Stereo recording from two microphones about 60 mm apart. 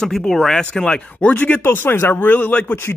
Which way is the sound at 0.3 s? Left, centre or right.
Centre.